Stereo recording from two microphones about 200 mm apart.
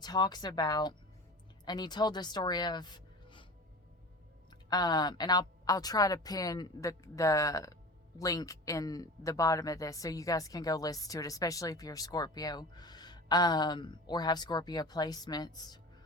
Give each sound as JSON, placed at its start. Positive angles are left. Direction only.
{"t": 0.0, "sound": "speech", "side_deg": 20}
{"t": 4.7, "sound": "speech", "side_deg": 20}